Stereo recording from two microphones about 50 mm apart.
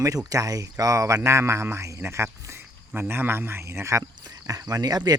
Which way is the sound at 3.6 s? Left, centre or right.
Right.